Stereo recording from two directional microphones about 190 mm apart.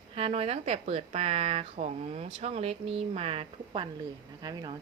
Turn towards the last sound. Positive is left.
turn(degrees=-20)  # may be behind; listen again after turning